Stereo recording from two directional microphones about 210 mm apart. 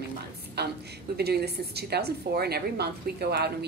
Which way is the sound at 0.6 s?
50° right (ahead or behind).